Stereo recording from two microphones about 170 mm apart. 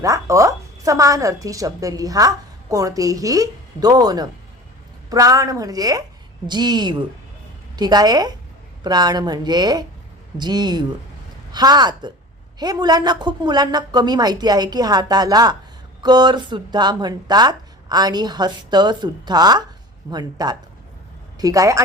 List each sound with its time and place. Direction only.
0.0 s speech: 20° right (ahead or behind)